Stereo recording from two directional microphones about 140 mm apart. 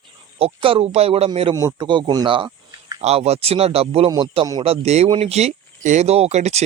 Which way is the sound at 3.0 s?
50° right (ahead or behind).